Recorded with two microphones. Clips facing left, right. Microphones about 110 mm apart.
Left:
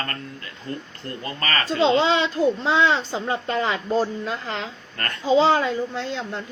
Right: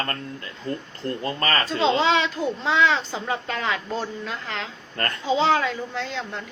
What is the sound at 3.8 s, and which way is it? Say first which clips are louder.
Speech: left 6 dB; 40° left (ahead or behind).